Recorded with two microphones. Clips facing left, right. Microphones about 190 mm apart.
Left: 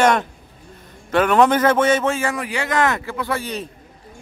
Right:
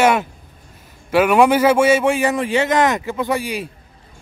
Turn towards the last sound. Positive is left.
turn(degrees=-10)  # may be behind; listen again after turning